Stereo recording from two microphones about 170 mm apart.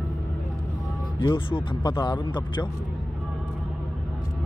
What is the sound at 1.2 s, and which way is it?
Speech, 30° left (ahead or behind).